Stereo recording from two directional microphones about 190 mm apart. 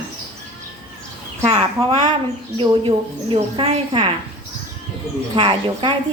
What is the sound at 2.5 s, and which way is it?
A woman's voice, 30° right (ahead or behind).